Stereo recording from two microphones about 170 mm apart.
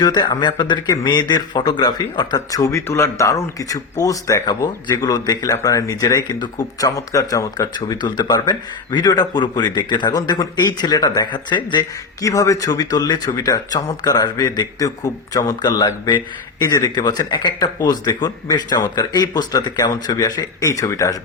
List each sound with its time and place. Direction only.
0.0 s speech: 25° left (ahead or behind)